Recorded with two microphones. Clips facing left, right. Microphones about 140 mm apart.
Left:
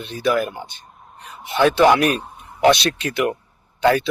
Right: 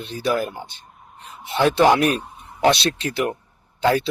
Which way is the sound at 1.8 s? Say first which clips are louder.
Even; 25° right (ahead or behind).